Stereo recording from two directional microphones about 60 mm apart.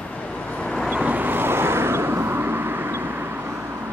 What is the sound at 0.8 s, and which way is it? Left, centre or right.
Vehicle, right.